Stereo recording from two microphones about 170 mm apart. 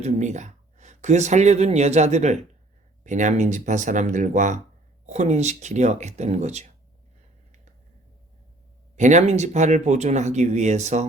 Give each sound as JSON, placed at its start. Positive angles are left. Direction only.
{"t": 0.0, "sound": "speech", "side_deg": -45}
{"t": 9.0, "sound": "speech", "side_deg": -45}